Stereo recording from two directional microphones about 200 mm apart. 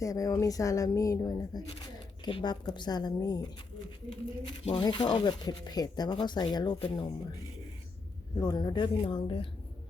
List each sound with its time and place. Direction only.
0.0 s speech: 15° left (ahead or behind)
4.6 s speech: 25° left (ahead or behind)
8.4 s speech: 20° left (ahead or behind)